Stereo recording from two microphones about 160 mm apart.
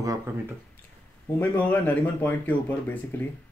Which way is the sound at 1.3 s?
10° left (ahead or behind).